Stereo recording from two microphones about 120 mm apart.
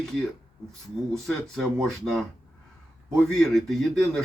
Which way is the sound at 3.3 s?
5° left (ahead or behind).